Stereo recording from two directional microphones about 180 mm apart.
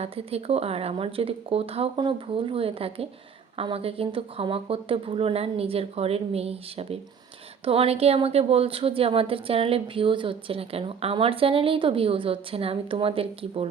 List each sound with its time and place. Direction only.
0.0 s speech: 35° right (ahead or behind)